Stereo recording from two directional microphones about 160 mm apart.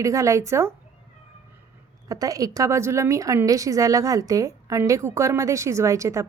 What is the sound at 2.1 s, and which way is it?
A woman's voice, 20° right (ahead or behind).